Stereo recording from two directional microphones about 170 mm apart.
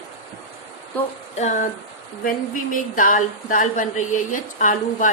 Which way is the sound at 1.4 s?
45° left (ahead or behind).